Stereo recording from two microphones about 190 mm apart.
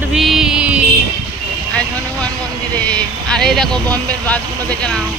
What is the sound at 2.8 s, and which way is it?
Speech, 5° left (ahead or behind).